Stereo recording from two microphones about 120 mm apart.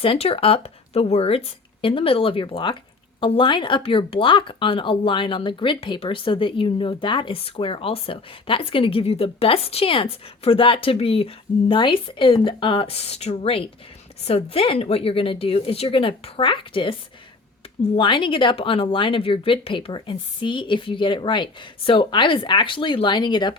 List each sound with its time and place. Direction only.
0.0 s speech: 50° left (ahead or behind)
17.9 s speech: 45° left (ahead or behind)